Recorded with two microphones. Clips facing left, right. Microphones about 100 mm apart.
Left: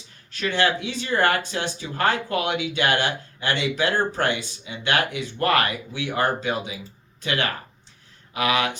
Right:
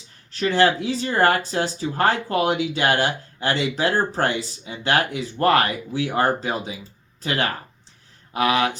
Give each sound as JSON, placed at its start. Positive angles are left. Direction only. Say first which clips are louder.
{"t": 0.3, "sound": "speech", "louder": "right 4 dB", "side_deg": -35}